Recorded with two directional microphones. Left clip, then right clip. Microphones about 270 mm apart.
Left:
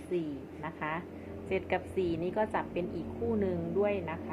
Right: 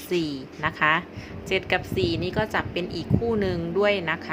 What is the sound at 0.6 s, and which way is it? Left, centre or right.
A woman's voice, right.